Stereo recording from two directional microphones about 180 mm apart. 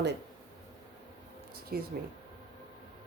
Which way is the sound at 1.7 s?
55° right (ahead or behind).